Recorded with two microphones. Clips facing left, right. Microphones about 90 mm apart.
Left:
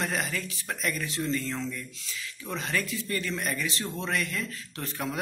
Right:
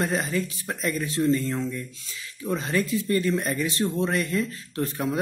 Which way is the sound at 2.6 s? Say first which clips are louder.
Right 5 dB; 30° right (ahead or behind).